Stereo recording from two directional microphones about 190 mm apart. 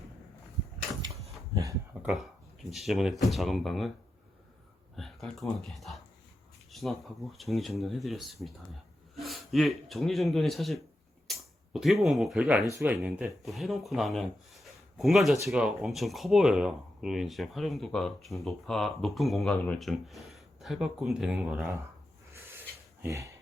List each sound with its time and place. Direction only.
1.5 s a sound: 15° right (ahead or behind)
2.6 s speech: centre (ahead or behind)
4.9 s a man's voice: centre (ahead or behind)
22.3 s rub: 10° right (ahead or behind)
23.0 s speech: 15° right (ahead or behind)